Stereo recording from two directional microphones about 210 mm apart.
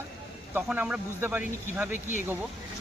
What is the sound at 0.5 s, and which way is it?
Speech, 5° right (ahead or behind).